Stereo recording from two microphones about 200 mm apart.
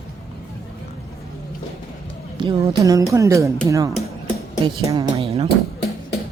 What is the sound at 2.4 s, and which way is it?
Speech, 25° right (ahead or behind).